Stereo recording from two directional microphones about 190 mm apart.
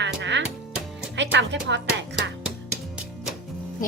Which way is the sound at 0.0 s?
70° right (ahead or behind).